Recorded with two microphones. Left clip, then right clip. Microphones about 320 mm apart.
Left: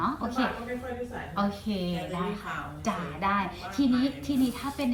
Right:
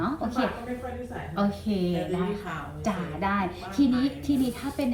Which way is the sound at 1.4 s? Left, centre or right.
Centre.